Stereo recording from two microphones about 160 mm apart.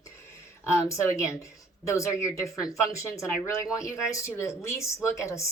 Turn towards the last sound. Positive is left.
turn(degrees=20)  # may be behind; listen again after turning